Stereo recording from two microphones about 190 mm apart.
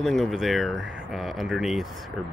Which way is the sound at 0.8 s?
90° right.